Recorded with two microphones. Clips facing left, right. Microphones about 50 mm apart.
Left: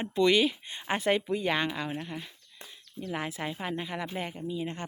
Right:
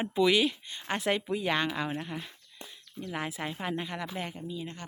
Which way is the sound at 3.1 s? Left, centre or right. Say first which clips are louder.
Left 1 dB; centre.